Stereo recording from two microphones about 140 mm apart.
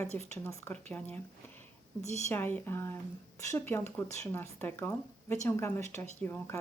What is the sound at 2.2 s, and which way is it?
Speech, 15° left (ahead or behind).